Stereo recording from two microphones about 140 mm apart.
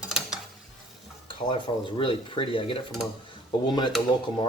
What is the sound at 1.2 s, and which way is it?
Speech, 35° left (ahead or behind).